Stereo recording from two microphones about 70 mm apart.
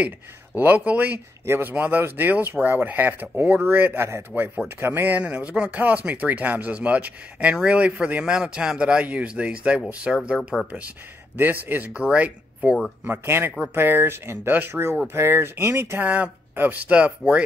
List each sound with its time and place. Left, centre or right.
0.6 s a man's voice: right
11.6 s speech: right
13.0 s speech: right
16.0 s speech: right